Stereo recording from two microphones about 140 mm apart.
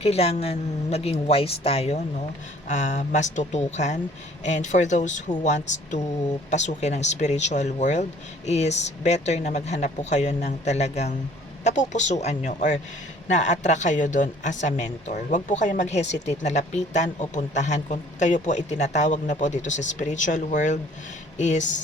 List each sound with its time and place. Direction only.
0.0 s speech: 45° left (ahead or behind)
2.6 s a woman's voice: 60° left (ahead or behind)